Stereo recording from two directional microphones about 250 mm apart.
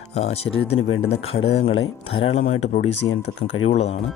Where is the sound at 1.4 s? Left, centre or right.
Left.